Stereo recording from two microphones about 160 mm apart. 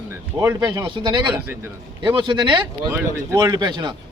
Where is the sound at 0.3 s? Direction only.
25° right (ahead or behind).